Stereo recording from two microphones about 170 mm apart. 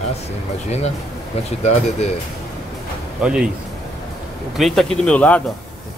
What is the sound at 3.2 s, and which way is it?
Speech, 5° right (ahead or behind).